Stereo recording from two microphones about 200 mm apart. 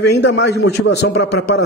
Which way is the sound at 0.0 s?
60° left (ahead or behind).